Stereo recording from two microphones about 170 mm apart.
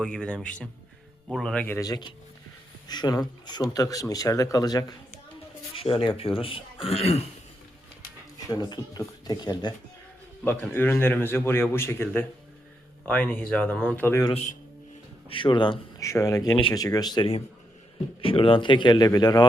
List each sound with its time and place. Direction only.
0.0 s a man's voice: 5° left (ahead or behind); by 7.3 s 35° left (ahead or behind)
8.4 s speech: 25° left (ahead or behind)
10.4 s a man's voice: 15° left (ahead or behind)
15.3 s speech: 30° left (ahead or behind)